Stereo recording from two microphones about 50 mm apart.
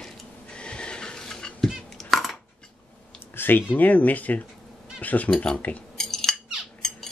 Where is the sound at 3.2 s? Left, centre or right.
Left.